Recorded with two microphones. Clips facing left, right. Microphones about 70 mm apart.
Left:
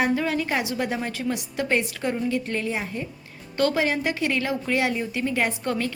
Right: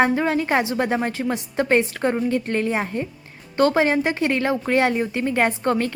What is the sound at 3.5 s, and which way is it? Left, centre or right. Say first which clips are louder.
Speech: right 5 dB; right.